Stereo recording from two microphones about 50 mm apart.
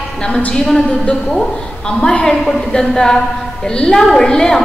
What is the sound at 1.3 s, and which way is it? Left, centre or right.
A woman's voice, centre.